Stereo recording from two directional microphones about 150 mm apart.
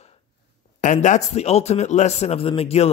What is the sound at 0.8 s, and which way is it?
Speech, 55° left (ahead or behind).